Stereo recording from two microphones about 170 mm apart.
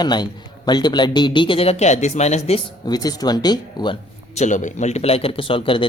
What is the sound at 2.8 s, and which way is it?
Speech, 25° left (ahead or behind).